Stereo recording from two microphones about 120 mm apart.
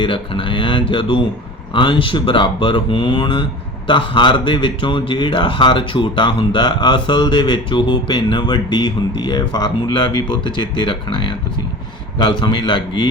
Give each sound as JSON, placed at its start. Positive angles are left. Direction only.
{"t": 0.0, "sound": "a man's voice", "side_deg": 45}